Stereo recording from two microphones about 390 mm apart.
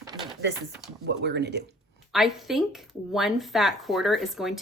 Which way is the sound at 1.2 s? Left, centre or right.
Right.